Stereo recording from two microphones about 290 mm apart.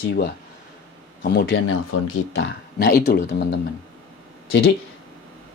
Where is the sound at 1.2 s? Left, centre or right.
Left.